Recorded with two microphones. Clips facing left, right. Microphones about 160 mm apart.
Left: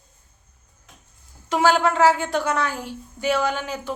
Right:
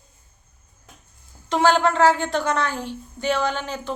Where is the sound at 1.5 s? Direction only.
5° left (ahead or behind).